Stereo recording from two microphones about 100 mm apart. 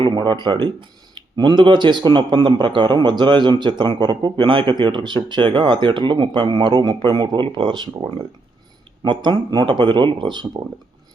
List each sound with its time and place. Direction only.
0.3 s speech: 50° right (ahead or behind)
9.0 s speech: 50° right (ahead or behind)